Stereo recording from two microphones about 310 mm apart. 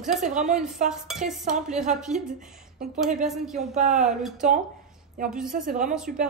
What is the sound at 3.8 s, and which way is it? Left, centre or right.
Speech, right.